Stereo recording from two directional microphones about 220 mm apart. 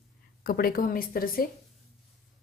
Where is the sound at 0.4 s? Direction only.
40° left (ahead or behind).